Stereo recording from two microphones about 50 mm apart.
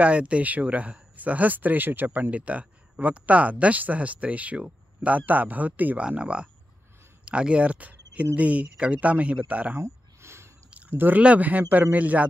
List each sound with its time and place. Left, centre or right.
0.0 s speech: right
2.3 s speech: right
5.9 s speech: right
9.8 s a sound: right
10.9 s speech: right